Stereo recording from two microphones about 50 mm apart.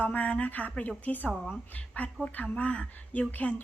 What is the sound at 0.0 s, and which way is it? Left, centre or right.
A woman's voice, left.